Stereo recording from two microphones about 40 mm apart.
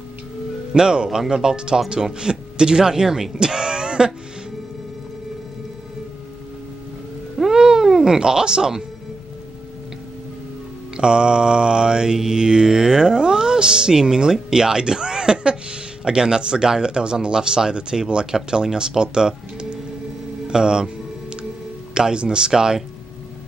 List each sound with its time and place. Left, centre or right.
0.7 s speech: centre
7.5 s cat: centre
11.0 s mantra: right
20.4 s speech: centre
21.9 s mantra: right